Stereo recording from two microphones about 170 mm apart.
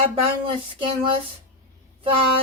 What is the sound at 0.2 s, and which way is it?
Cutlery, 30° right (ahead or behind).